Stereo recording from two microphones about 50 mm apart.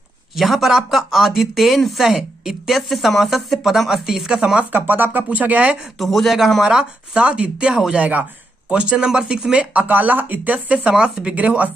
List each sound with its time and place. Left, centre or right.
0.4 s speech: centre
4.6 s speech: right
5.9 s speech: centre
6.6 s speech: centre
7.2 s speech: right
7.9 s speech: right